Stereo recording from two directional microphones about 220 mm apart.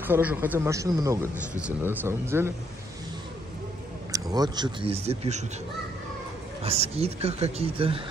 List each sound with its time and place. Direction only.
0.0 s speech: 10° right (ahead or behind)
4.1 s speech: 15° right (ahead or behind)
6.6 s speech: 25° right (ahead or behind)